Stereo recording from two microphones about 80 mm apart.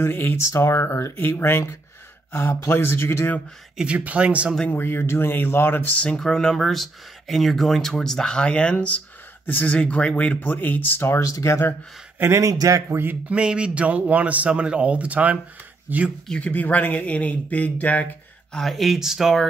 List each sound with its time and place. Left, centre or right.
0.0 s speech: left
3.7 s a man's voice: centre
4.6 s speech: left
5.9 s speech: centre; by 11.7 s left
12.2 s speech: right
12.9 s speech: right
13.3 s a man's voice: centre
16.3 s speech: centre
18.5 s speech: centre